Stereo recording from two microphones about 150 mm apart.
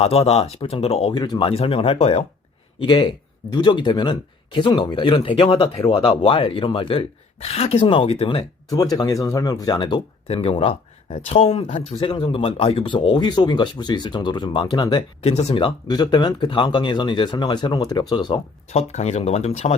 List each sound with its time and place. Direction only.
0.0 s speech: 40° left (ahead or behind)
1.1 s speech: 30° left (ahead or behind)
2.8 s speech: 30° left (ahead or behind)
8.7 s speech: 25° left (ahead or behind)
15.2 s speech: 45° left (ahead or behind); by 18.3 s 30° left (ahead or behind)
18.7 s speech: 45° left (ahead or behind)